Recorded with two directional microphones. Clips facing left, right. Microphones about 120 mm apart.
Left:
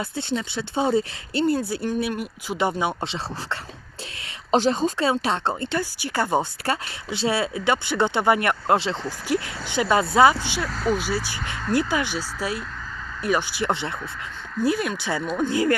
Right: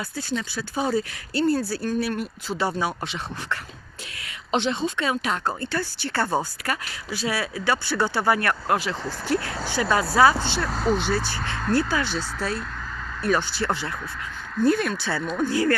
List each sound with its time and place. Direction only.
0.0 s speech: 25° left (ahead or behind)
4.5 s speech: 40° left (ahead or behind); by 6.5 s 15° left (ahead or behind)
6.7 s speech: 25° left (ahead or behind)
9.0 s speech: 15° left (ahead or behind)
14.6 s speech: 10° left (ahead or behind)